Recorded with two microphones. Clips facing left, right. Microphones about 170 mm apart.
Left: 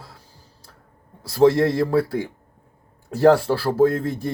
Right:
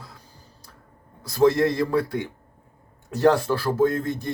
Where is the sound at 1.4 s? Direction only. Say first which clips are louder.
Left 3 dB; 30° left (ahead or behind).